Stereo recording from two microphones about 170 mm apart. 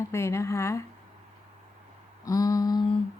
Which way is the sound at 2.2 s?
20° left (ahead or behind).